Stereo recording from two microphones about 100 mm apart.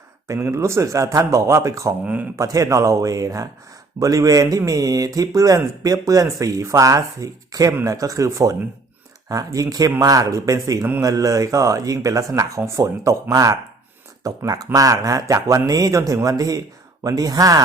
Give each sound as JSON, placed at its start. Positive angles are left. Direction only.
{"t": 0.3, "sound": "speech", "side_deg": -25}